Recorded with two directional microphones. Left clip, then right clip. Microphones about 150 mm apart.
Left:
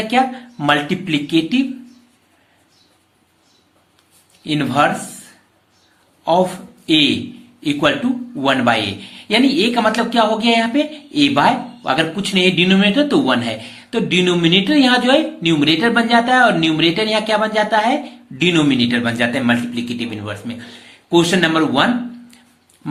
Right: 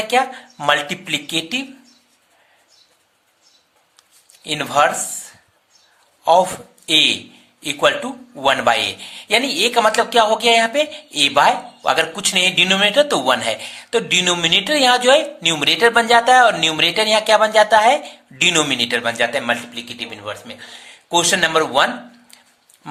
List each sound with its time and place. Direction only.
0.1 s a man's voice: 45° right (ahead or behind)
4.4 s a man's voice: 45° right (ahead or behind)